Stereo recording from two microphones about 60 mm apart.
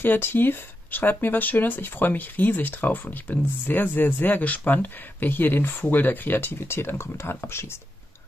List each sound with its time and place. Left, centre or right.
0.0 s speech: left